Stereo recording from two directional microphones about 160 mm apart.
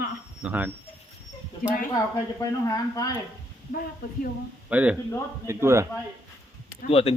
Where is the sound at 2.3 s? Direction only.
20° left (ahead or behind).